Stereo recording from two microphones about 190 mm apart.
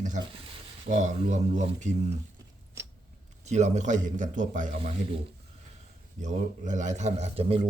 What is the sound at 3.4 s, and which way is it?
Speech, 35° right (ahead or behind).